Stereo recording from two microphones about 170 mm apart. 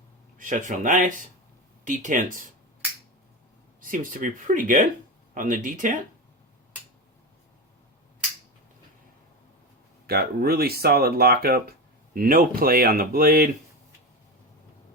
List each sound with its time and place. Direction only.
0.3 s speech: 50° right (ahead or behind)
3.8 s speech: 55° right (ahead or behind)
10.1 s speech: 70° right (ahead or behind)